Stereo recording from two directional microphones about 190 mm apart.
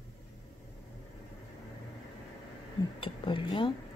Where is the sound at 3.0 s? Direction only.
25° left (ahead or behind).